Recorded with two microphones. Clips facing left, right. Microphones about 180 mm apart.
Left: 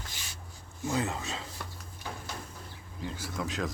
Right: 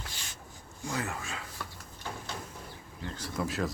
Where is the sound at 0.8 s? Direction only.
20° left (ahead or behind).